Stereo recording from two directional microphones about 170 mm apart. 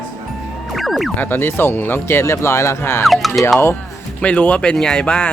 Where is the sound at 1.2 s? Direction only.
15° left (ahead or behind).